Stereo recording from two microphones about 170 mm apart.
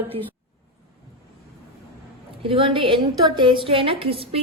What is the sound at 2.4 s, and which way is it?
A woman's voice, 30° right (ahead or behind).